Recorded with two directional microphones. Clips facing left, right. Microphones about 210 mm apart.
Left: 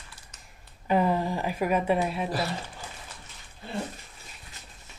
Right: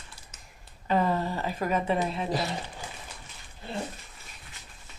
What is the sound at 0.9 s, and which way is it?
A woman's voice, 10° left (ahead or behind).